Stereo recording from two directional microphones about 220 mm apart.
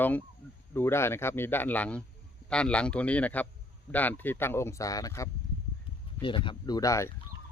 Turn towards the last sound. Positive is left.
turn(degrees=15)  # may be behind; listen again after turning